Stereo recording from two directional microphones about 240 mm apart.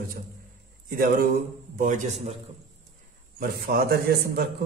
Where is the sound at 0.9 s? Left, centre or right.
Right.